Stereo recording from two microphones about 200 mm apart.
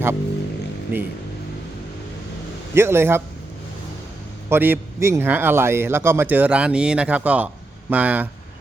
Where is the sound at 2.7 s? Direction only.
10° right (ahead or behind).